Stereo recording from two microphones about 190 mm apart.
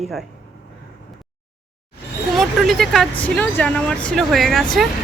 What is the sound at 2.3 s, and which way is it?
Speech, centre (ahead or behind).